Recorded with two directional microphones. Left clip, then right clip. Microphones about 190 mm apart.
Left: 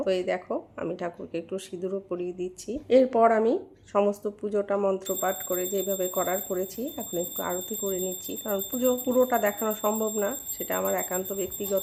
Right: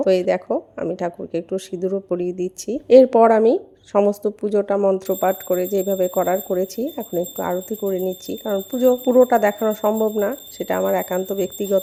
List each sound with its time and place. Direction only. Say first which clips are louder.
0.0 s speech: right 9 dB; 35° right (ahead or behind)